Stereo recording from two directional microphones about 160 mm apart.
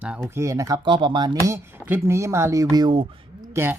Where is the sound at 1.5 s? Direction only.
15° right (ahead or behind); by 3.2 s 30° right (ahead or behind).